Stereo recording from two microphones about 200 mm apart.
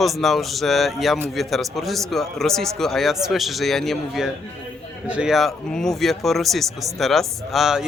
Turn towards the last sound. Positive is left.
turn(degrees=0)  # may be behind; listen again after turning